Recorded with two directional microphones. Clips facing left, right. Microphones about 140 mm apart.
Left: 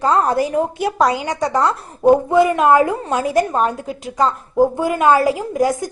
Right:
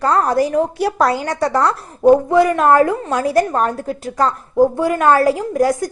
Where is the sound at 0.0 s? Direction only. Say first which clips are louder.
Right 1 dB; 20° left (ahead or behind).